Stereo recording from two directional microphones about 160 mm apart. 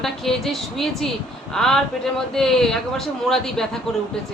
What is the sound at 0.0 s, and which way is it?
Speech, centre (ahead or behind).